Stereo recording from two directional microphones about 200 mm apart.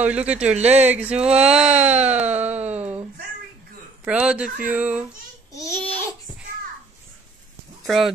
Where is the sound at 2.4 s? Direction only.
35° right (ahead or behind).